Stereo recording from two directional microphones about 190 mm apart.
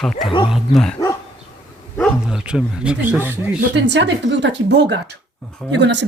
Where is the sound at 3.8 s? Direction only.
65° right (ahead or behind).